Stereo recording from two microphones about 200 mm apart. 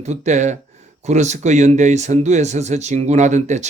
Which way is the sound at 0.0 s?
35° right (ahead or behind).